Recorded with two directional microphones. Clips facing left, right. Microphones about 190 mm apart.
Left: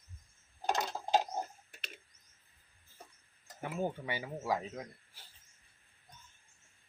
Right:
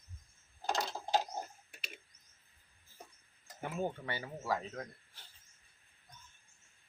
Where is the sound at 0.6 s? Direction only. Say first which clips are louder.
Left 2 dB; 20° left (ahead or behind).